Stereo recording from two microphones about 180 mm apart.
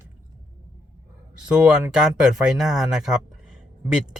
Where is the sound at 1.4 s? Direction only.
5° right (ahead or behind).